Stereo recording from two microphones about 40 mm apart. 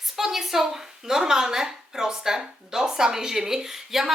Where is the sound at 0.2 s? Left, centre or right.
Centre.